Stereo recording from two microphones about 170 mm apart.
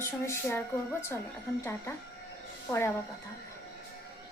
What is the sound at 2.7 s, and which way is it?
Speech, centre (ahead or behind).